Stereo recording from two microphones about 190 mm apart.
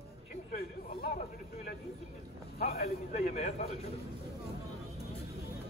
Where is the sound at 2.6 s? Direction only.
35° left (ahead or behind).